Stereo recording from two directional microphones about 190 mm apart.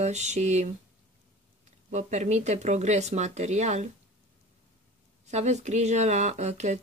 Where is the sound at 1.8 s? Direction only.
40° right (ahead or behind).